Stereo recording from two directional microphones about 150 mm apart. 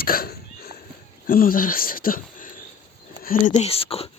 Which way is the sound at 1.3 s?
70° left (ahead or behind).